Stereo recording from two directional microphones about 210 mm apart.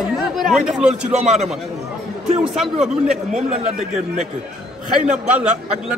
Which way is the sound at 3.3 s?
30° right (ahead or behind).